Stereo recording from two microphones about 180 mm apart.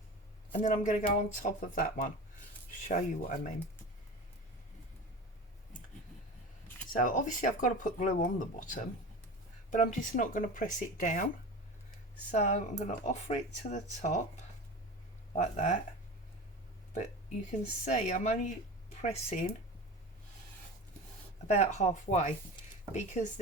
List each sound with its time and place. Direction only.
0.6 s speech: 45° left (ahead or behind)
7.0 s speech: 45° left (ahead or behind)
12.3 s speech: 40° left (ahead or behind)
15.4 s speech: 40° left (ahead or behind)
16.9 s a sound: 40° left (ahead or behind)
17.8 s speech: 40° left (ahead or behind)
21.4 s speech: 40° left (ahead or behind)